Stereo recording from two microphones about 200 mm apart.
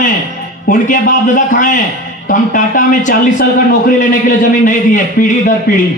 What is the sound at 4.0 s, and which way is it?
A man's voice, 40° left (ahead or behind).